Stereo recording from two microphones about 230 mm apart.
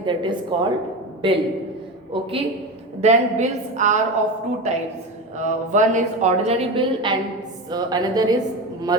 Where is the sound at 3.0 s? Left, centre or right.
Right.